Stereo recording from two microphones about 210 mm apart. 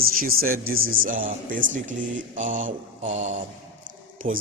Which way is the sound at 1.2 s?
65° right (ahead or behind).